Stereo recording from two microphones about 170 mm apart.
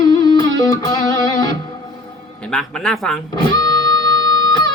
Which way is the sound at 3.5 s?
25° left (ahead or behind).